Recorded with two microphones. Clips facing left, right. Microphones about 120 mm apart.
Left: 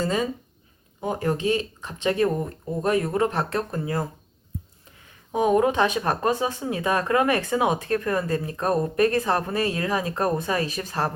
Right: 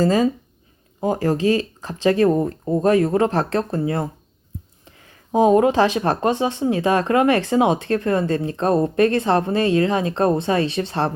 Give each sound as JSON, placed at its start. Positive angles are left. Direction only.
{"t": 0.0, "sound": "speech", "side_deg": -35}